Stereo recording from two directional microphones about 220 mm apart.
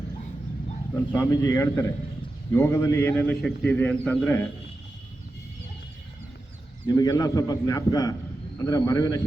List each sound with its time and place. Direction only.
1.1 s a man's voice: 15° left (ahead or behind)
6.8 s a man's voice: 15° left (ahead or behind)